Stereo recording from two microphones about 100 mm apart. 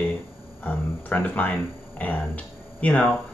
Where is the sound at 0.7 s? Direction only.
15° left (ahead or behind).